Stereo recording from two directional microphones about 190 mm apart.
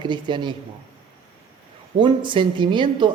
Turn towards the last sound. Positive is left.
turn(degrees=-25)  # may be behind; listen again after turning